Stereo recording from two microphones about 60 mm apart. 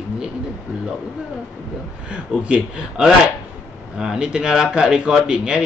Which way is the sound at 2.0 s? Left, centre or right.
Centre.